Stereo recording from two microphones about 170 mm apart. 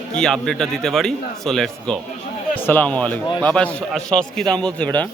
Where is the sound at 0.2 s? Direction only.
5° left (ahead or behind).